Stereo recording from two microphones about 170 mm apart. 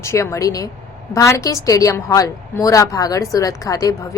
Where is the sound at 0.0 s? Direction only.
15° left (ahead or behind).